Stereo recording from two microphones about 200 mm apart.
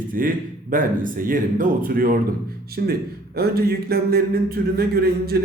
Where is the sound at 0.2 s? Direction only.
45° right (ahead or behind).